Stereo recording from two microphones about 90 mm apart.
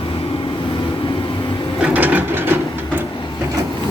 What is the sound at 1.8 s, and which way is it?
Printer, 15° right (ahead or behind).